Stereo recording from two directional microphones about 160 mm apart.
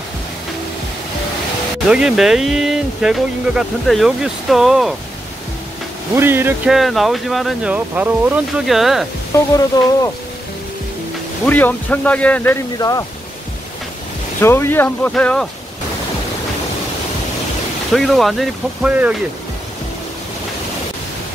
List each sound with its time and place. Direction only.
1.9 s speech: 5° right (ahead or behind)
6.1 s speech: 15° right (ahead or behind)
6.7 s speech: centre (ahead or behind)
7.7 s speech: 10° right (ahead or behind)
9.3 s speech: 20° left (ahead or behind)
11.4 s speech: 10° left (ahead or behind)
12.7 s speech: 20° left (ahead or behind)
14.4 s speech: 15° left (ahead or behind)
17.9 s speech: centre (ahead or behind)